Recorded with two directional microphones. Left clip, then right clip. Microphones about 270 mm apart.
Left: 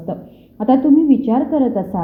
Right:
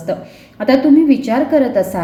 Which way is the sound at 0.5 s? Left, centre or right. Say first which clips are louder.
Right 2 dB; centre.